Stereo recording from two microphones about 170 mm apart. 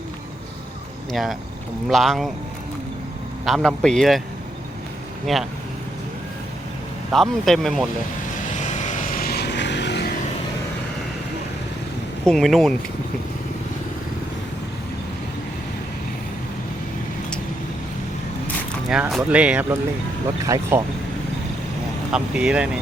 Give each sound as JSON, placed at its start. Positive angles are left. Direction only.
{"t": 1.1, "sound": "speech", "side_deg": 0}
{"t": 3.4, "sound": "a man's voice", "side_deg": 0}
{"t": 5.2, "sound": "speech", "side_deg": 0}
{"t": 7.1, "sound": "speech", "side_deg": 0}
{"t": 8.4, "sound": "vehicle", "side_deg": 45}
{"t": 12.2, "sound": "speech", "side_deg": 0}
{"t": 18.9, "sound": "speech", "side_deg": -5}
{"t": 22.1, "sound": "speech", "side_deg": -5}